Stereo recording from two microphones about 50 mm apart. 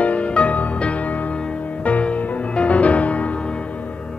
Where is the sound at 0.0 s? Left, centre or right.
Left.